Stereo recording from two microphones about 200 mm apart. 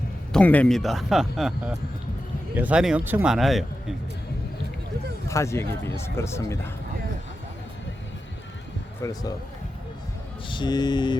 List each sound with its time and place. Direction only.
0.3 s speech: 5° left (ahead or behind)
5.3 s speech: 15° left (ahead or behind)
9.0 s speech: 15° left (ahead or behind)
10.5 s a sound: 20° left (ahead or behind)